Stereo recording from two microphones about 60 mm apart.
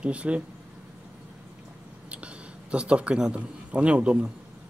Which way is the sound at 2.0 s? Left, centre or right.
Centre.